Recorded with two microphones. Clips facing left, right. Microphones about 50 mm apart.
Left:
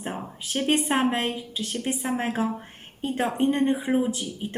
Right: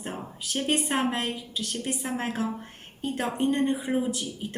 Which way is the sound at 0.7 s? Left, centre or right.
Left.